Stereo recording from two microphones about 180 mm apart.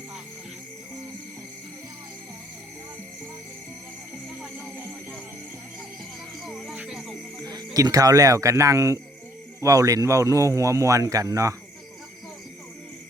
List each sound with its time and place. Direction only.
4.5 s music: 10° right (ahead or behind)
6.4 s music: centre (ahead or behind)
7.3 s speech: 20° right (ahead or behind)